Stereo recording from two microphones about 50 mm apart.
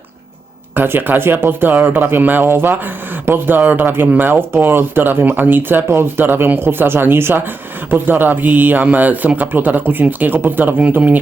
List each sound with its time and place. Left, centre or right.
0.7 s speech: right